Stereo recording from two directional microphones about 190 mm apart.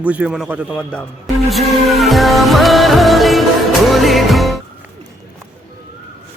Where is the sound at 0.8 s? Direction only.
5° left (ahead or behind).